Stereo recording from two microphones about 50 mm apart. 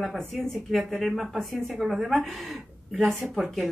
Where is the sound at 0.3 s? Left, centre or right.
Centre.